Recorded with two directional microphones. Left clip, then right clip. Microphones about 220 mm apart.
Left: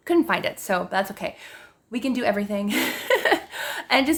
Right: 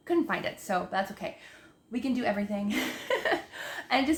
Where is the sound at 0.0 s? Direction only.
50° left (ahead or behind).